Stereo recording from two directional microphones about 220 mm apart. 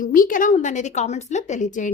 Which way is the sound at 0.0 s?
40° left (ahead or behind).